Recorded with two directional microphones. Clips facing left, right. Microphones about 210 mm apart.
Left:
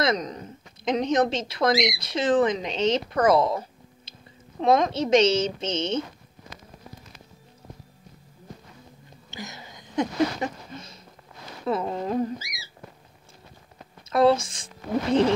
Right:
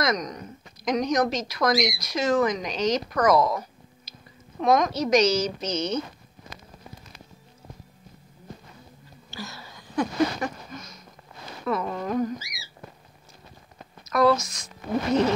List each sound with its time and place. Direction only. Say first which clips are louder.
0.0 s a woman's voice: left 1 dB; 30° left (ahead or behind)
9.3 s a sound: even; 20° left (ahead or behind)
11.6 s a woman's voice: left 1 dB; 30° left (ahead or behind)
14.0 s a woman's voice: left 1 dB; 30° left (ahead or behind)